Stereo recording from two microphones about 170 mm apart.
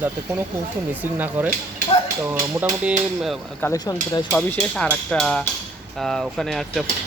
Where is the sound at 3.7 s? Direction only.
25° left (ahead or behind).